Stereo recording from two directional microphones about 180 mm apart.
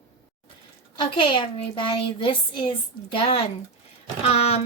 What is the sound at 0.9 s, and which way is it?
Speech, 25° left (ahead or behind).